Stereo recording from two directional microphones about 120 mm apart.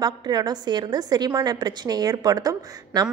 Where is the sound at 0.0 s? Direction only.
35° right (ahead or behind).